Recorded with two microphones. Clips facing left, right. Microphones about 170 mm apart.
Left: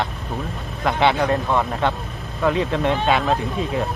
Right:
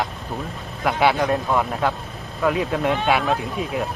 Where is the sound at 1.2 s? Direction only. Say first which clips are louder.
Left 1 dB; 5° right (ahead or behind).